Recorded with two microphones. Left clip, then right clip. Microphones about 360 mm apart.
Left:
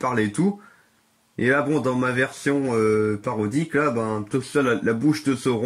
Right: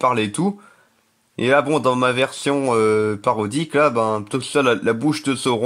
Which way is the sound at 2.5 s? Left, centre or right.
Right.